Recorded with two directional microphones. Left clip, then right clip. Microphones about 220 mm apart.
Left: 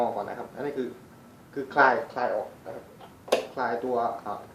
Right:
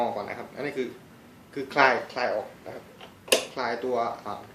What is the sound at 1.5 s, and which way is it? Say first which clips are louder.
Speech: even; 20° right (ahead or behind).